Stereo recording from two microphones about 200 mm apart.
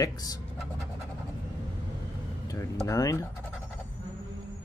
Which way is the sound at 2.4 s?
15° left (ahead or behind).